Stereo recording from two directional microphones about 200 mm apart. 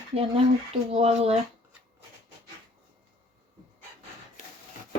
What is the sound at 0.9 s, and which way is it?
Speech, 30° right (ahead or behind).